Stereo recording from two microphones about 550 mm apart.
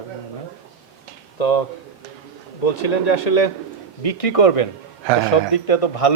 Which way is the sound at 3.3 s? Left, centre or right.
Left.